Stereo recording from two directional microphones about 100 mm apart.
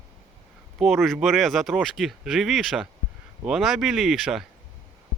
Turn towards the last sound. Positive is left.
turn(degrees=-5)  # may be behind; listen again after turning